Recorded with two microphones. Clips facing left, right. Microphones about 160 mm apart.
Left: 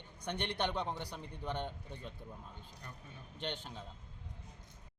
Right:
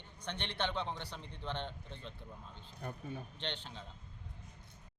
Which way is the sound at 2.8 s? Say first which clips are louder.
Right 14 dB; 55° right (ahead or behind).